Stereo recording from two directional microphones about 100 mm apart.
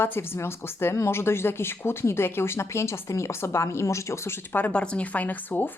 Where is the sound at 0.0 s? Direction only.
25° left (ahead or behind).